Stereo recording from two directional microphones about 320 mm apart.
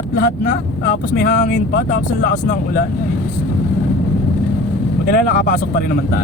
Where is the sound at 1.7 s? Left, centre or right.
Left.